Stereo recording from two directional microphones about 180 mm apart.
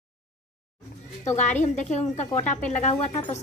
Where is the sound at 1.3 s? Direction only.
40° left (ahead or behind).